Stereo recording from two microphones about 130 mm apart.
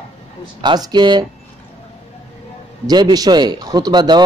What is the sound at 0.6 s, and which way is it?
Speech, 35° right (ahead or behind).